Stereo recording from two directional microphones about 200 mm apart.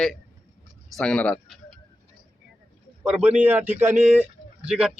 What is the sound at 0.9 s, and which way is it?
Speech, 5° left (ahead or behind).